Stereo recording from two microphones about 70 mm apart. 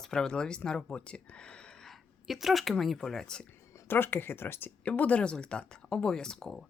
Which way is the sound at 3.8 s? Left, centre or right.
Left.